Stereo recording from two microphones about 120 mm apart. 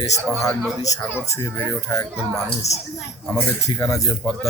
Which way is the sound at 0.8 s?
30° left (ahead or behind).